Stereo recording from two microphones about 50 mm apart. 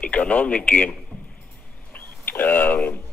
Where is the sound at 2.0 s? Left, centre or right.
Left.